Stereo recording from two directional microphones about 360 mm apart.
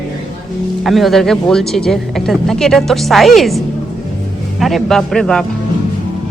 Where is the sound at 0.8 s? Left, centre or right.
Centre.